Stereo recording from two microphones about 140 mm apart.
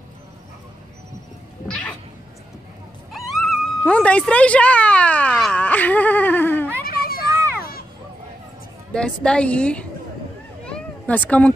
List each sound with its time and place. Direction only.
1.7 s cat: 10° left (ahead or behind)
3.2 s speech: centre (ahead or behind)
6.8 s children playing: 90° left
8.9 s a woman's voice: 5° left (ahead or behind)
10.6 s cat: 10° left (ahead or behind)